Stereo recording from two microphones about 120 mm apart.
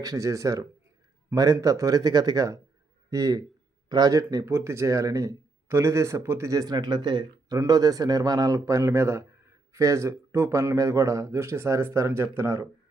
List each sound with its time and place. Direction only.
0.0 s speech: 30° right (ahead or behind)